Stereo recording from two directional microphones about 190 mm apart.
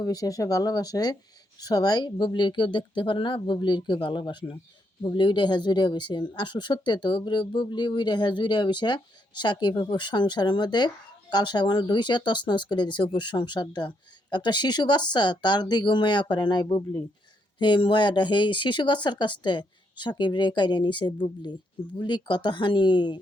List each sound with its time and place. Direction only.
0.0 s speech: 20° left (ahead or behind)